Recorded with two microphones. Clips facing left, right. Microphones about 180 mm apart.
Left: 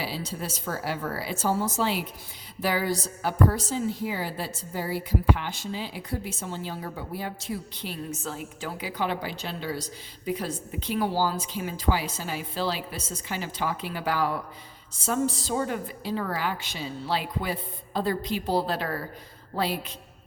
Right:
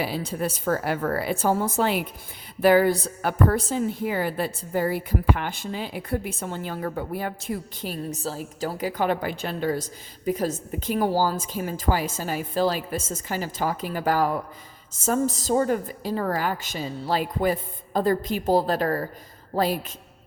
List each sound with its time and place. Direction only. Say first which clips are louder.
0.0 s a woman's voice: right 6 dB; 50° right (ahead or behind)